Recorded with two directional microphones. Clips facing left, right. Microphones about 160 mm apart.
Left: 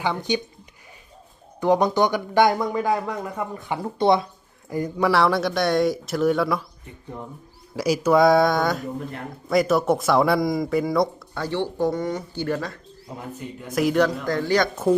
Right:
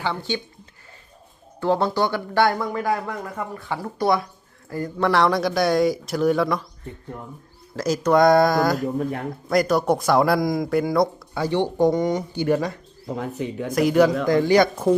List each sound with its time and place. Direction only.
0.0 s speech: 15° left (ahead or behind)
1.6 s speech: 15° left (ahead or behind)
4.7 s speech: 15° left (ahead or behind)
7.8 s speech: 10° left (ahead or behind)
11.3 s speech: 15° right (ahead or behind)
13.1 s speech: 90° right
13.7 s speech: centre (ahead or behind)
14.3 s speech: 15° right (ahead or behind)